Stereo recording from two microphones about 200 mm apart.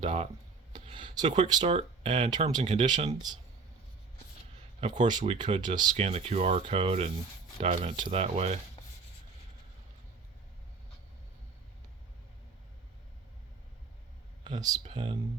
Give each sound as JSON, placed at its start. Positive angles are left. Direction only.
{"t": 0.0, "sound": "speech", "side_deg": -30}
{"t": 0.7, "sound": "a sound", "side_deg": -25}
{"t": 1.4, "sound": "speech", "side_deg": -25}
{"t": 4.8, "sound": "speech", "side_deg": -20}
{"t": 5.9, "sound": "speech", "side_deg": -30}
{"t": 14.4, "sound": "speech", "side_deg": -20}